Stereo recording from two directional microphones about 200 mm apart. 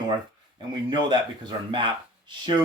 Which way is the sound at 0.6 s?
20° right (ahead or behind).